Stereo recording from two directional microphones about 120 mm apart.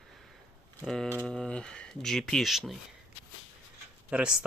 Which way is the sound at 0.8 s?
Centre (ahead or behind).